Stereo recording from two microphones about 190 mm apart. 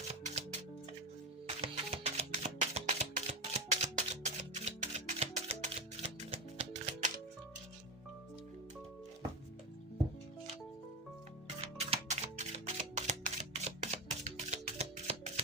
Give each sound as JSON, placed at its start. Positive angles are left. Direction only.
{"t": 0.1, "sound": "music", "side_deg": -35}
{"t": 1.5, "sound": "music", "side_deg": -30}
{"t": 11.6, "sound": "music", "side_deg": -35}